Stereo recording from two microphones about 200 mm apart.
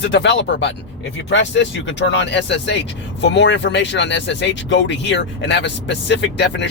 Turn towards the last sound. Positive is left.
turn(degrees=65)  # may be behind; listen again after turning